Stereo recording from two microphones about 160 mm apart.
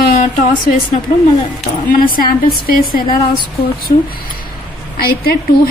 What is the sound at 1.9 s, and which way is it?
A woman's voice, 60° left (ahead or behind).